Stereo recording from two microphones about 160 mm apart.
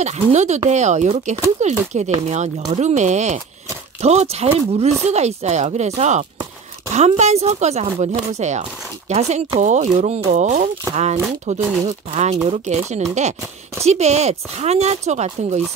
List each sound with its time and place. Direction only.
0.0 s speech: 45° right (ahead or behind)